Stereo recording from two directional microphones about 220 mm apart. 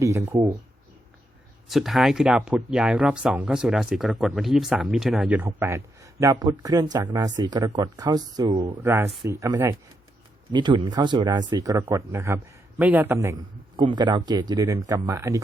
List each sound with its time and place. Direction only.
0.0 s speech: 15° right (ahead or behind)
1.6 s speech: centre (ahead or behind)